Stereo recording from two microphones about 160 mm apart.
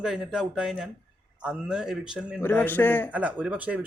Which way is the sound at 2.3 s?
10° left (ahead or behind).